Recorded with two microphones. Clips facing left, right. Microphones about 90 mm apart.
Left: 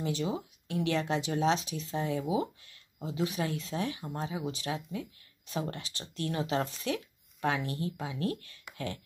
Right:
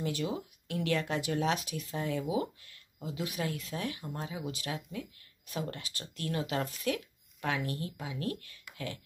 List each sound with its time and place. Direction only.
0.0 s speech: 25° left (ahead or behind)